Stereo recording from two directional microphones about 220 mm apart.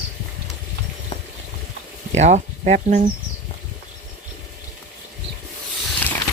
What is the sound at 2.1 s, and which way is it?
Speech, 30° right (ahead or behind).